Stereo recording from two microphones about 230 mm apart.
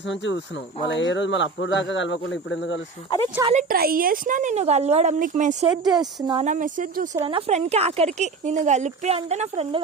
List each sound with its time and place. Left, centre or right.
0.1 s speech: left
3.4 s speech: right
5.8 s speech: centre
6.4 s speech: right
7.2 s speech: right